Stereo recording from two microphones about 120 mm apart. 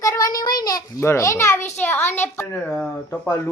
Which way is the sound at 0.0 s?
30° left (ahead or behind).